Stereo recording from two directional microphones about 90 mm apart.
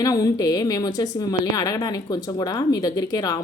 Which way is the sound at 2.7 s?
45° left (ahead or behind).